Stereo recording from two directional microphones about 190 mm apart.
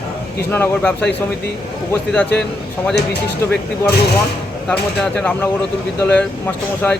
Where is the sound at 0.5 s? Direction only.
10° left (ahead or behind).